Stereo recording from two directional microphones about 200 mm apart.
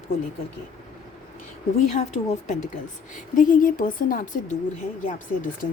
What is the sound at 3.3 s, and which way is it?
Speech, 40° left (ahead or behind).